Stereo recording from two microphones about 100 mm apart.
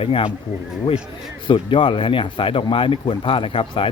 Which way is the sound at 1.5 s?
55° left (ahead or behind).